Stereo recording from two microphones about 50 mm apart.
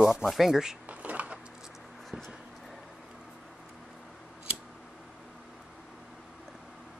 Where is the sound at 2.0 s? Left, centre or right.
Centre.